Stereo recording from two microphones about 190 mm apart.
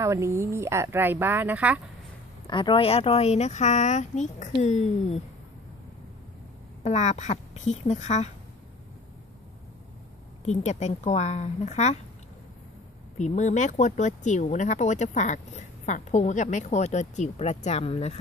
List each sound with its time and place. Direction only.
0.0 s speech: 15° right (ahead or behind)
2.4 s speech: 25° left (ahead or behind)
6.8 s speech: 35° left (ahead or behind)
10.4 s speech: 35° left (ahead or behind)
13.2 s speech: 40° left (ahead or behind)